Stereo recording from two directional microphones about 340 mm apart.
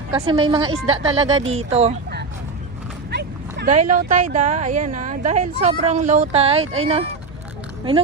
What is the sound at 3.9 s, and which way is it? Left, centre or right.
Speech, right.